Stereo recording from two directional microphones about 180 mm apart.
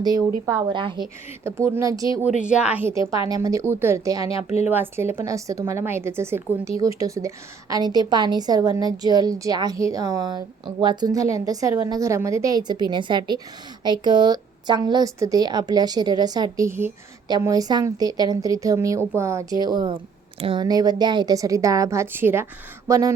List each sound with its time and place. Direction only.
0.0 s a woman's voice: 20° right (ahead or behind)
1.5 s a woman's voice: 15° right (ahead or behind)
2.4 s a woman's voice: 5° right (ahead or behind)